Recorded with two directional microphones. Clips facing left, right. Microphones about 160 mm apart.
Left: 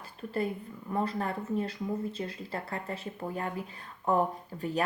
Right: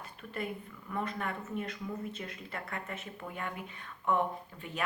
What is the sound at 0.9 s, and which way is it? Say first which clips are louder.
Speech: left 5 dB; 35° left (ahead or behind).